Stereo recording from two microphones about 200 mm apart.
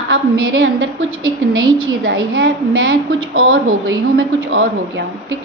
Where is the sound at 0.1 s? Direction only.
75° right (ahead or behind).